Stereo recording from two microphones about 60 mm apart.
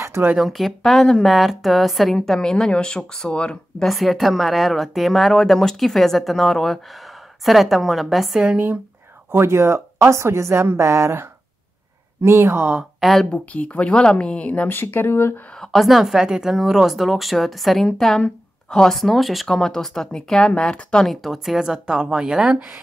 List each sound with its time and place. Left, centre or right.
0.4 s a woman's voice: centre
3.8 s speech: centre
8.4 s a woman's voice: centre
9.3 s a woman's voice: right
13.0 s speech: centre
13.3 s speech: left
15.6 s a woman's voice: centre
21.1 s a woman's voice: centre